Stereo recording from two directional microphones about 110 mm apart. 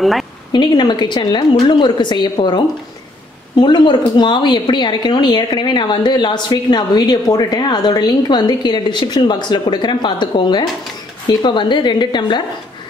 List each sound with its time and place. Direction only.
0.0 s a woman's voice: centre (ahead or behind)
0.5 s a woman's voice: 45° left (ahead or behind)